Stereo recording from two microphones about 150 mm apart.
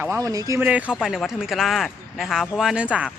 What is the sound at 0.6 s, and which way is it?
Speech, 10° right (ahead or behind).